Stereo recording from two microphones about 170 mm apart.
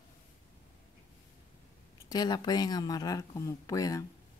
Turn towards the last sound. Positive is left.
turn(degrees=20)  # may be behind; listen again after turning